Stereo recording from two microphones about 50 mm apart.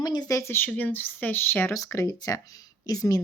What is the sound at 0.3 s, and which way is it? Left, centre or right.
Speech, left.